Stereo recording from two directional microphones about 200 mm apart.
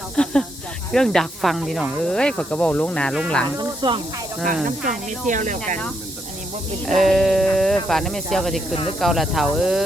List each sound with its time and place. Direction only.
0.2 s snake: 5° left (ahead or behind)
0.9 s speech: centre (ahead or behind)
3.6 s speech: 20° right (ahead or behind)
4.6 s speech: 40° right (ahead or behind)
6.8 s speech: centre (ahead or behind)